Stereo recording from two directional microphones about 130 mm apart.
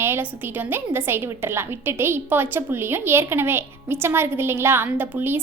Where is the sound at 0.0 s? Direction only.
15° right (ahead or behind).